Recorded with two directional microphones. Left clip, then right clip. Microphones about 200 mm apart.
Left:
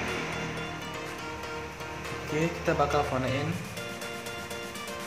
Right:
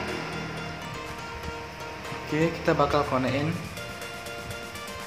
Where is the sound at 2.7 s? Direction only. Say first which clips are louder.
Right 3 dB; 20° right (ahead or behind).